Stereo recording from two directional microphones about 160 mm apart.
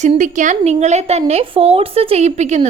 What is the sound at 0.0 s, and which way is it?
A woman's voice, 50° right (ahead or behind).